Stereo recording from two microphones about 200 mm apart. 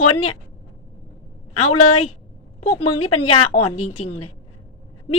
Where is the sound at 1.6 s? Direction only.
90° left.